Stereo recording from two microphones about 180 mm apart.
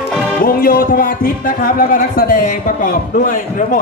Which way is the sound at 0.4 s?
50° left (ahead or behind).